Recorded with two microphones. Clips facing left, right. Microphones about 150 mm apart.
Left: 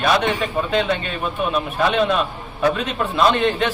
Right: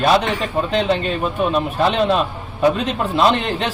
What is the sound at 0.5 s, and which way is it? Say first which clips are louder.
A man's voice: right 5 dB; 35° right (ahead or behind).